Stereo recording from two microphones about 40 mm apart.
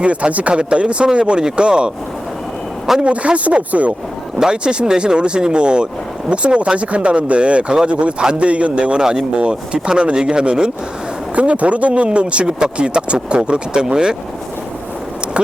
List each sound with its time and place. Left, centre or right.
0.0 s speech: right
3.0 s speech: right
4.4 s speech: centre
11.3 s speech: right; by 14.2 s centre